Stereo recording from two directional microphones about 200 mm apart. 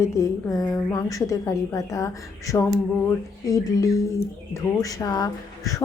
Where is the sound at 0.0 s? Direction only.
15° left (ahead or behind).